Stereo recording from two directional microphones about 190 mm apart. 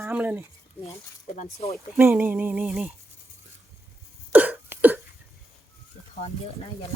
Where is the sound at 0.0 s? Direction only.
10° right (ahead or behind).